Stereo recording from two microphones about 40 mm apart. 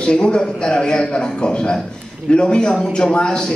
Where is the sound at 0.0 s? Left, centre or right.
Left.